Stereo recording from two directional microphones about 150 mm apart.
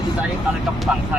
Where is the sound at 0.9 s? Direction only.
5° right (ahead or behind).